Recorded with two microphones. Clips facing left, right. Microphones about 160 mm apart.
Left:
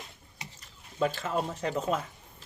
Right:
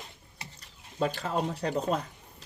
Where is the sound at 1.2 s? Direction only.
40° right (ahead or behind).